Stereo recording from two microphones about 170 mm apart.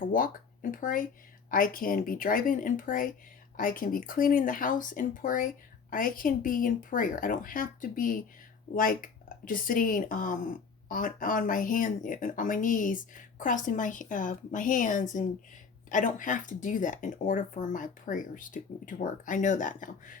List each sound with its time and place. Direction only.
0.1 s speech: 55° left (ahead or behind)